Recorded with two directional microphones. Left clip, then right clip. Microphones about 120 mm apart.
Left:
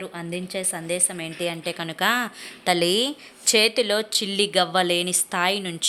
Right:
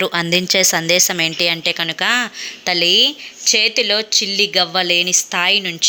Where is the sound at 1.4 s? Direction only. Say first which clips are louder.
Right 6 dB; 5° right (ahead or behind).